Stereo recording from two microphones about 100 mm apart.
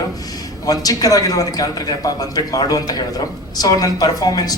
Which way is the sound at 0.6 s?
40° left (ahead or behind).